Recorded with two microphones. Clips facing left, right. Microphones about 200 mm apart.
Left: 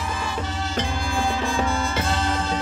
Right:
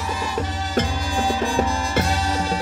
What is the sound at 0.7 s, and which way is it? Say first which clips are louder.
Music: right 4 dB; 35° right (ahead or behind).